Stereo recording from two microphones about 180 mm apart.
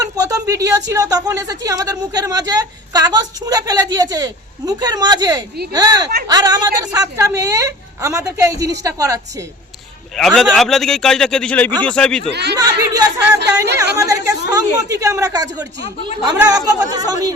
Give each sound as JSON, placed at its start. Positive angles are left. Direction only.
{"t": 0.0, "sound": "a sound", "side_deg": -20}
{"t": 0.9, "sound": "a woman's voice", "side_deg": -20}
{"t": 10.2, "sound": "a man's voice", "side_deg": 0}
{"t": 12.3, "sound": "speech", "side_deg": -70}
{"t": 12.5, "sound": "a woman's voice", "side_deg": -20}